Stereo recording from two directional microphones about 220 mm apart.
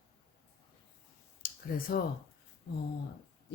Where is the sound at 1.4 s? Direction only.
40° left (ahead or behind).